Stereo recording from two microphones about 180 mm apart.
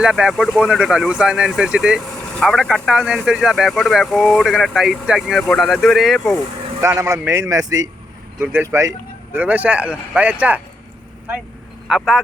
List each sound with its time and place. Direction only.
0.0 s speech: 5° right (ahead or behind)
6.8 s speech: 15° right (ahead or behind)
11.9 s speech: centre (ahead or behind)